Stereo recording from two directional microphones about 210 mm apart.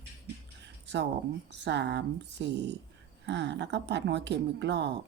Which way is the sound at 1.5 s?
55° right (ahead or behind).